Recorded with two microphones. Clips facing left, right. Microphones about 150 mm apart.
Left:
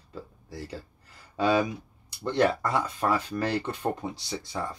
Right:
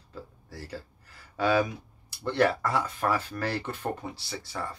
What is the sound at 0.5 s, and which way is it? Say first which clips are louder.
Speech: left 2 dB; 15° left (ahead or behind).